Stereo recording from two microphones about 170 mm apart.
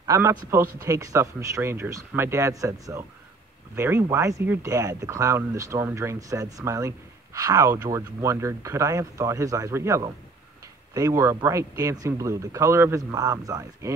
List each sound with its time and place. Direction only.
0.0 s speech: 20° right (ahead or behind)